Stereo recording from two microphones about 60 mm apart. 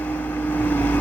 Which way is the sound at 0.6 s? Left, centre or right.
Left.